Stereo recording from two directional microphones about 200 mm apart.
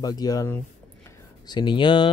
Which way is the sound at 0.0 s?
20° left (ahead or behind).